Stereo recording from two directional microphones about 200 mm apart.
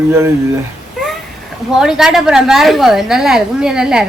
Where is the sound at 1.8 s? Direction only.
Centre (ahead or behind).